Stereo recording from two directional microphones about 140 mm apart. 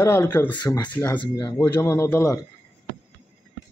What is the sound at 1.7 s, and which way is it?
Speech, 15° left (ahead or behind).